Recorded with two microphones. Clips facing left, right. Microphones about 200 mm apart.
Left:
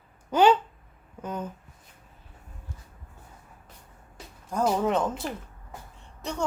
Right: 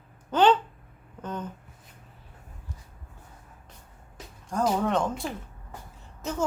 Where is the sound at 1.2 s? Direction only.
10° left (ahead or behind).